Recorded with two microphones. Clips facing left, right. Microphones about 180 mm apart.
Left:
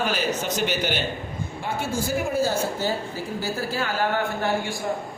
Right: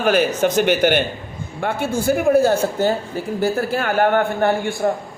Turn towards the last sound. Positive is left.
turn(degrees=-55)  # may be behind; listen again after turning